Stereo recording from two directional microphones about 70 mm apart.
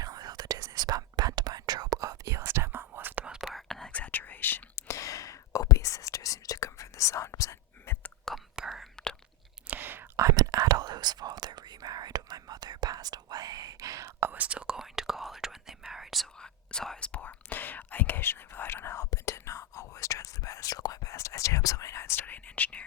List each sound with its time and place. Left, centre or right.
0.0 s whispering: right
3.2 s whispering: centre
3.9 s whispering: left
8.5 s whispering: centre
9.6 s whispering: right
10.2 s whispering: right
14.2 s whispering: right
14.8 s whispering: centre
16.4 s whispering: centre; by 22.4 s left
22.4 s whispering: left